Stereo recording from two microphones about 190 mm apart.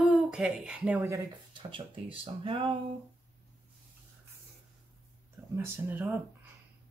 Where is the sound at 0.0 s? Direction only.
5° right (ahead or behind).